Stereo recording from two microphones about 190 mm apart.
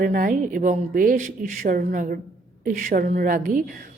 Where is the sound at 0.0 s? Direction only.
45° right (ahead or behind).